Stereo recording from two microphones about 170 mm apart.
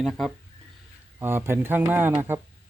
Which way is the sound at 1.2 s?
15° right (ahead or behind).